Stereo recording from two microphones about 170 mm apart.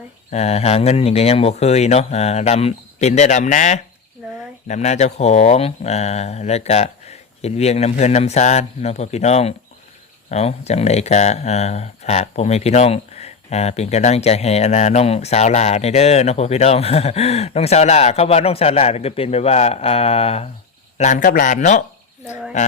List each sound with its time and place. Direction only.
0.3 s speech: 40° left (ahead or behind)
21.0 s a man's voice: 45° left (ahead or behind)